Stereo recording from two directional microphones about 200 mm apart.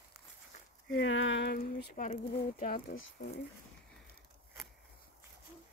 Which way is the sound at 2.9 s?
75° left (ahead or behind).